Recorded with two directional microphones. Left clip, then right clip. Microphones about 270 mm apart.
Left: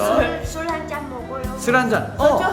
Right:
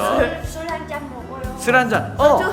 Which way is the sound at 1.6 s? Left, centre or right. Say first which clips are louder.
Right 2 dB; centre.